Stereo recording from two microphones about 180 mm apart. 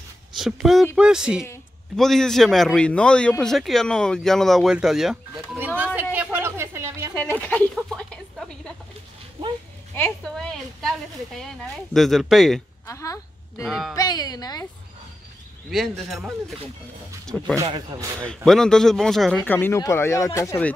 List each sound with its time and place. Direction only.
0.4 s a man's voice: 5° right (ahead or behind)
6.1 s a sound: 10° right (ahead or behind)
7.2 s a woman's voice: 10° left (ahead or behind)
9.9 s a man's voice: 10° left (ahead or behind)
12.8 s a sound: 15° left (ahead or behind)
13.7 s a man's voice: centre (ahead or behind)
13.9 s speech: 20° left (ahead or behind)
15.7 s a man's voice: centre (ahead or behind)
17.3 s speech: 10° left (ahead or behind)
17.6 s speech: 25° right (ahead or behind)
18.2 s speech: 5° left (ahead or behind)